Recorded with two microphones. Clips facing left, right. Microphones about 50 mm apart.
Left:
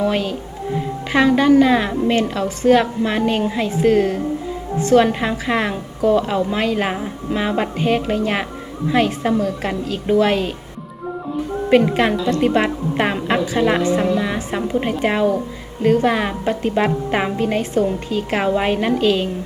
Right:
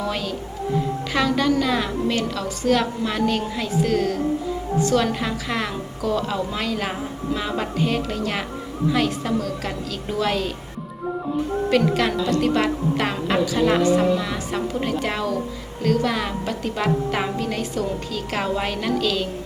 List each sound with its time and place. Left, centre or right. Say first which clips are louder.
0.0 s speech: left 6 dB; left
11.3 s speech: even; centre
11.7 s speech: left 6 dB; left